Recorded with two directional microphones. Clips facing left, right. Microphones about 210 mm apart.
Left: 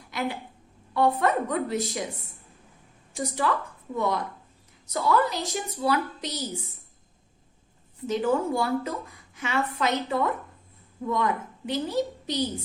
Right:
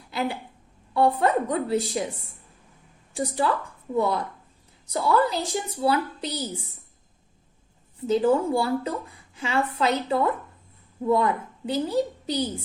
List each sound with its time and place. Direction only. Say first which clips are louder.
0.1 s a sound: right 2 dB; 30° right (ahead or behind)
0.9 s a woman's voice: right 2 dB; 30° right (ahead or behind)
3.2 s a woman's voice: right 2 dB; 30° right (ahead or behind)
8.0 s a woman's voice: right 4 dB; 30° right (ahead or behind)